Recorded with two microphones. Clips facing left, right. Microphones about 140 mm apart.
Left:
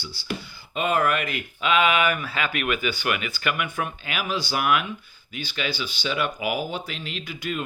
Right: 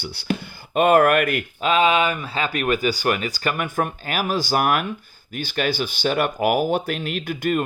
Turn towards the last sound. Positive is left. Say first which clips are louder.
# right 8 dB
turn(degrees=-50)  # may be behind; listen again after turning